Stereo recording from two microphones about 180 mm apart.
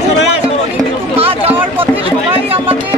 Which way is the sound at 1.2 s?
35° right (ahead or behind).